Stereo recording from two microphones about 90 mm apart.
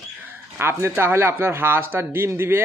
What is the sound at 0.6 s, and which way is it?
Speech, 25° right (ahead or behind).